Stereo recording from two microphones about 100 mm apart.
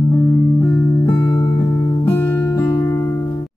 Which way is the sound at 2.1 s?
20° left (ahead or behind).